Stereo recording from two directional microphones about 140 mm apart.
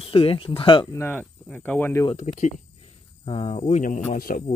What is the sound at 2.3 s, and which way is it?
Speech, 60° left (ahead or behind).